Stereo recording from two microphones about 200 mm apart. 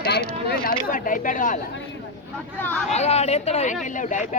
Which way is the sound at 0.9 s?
40° left (ahead or behind).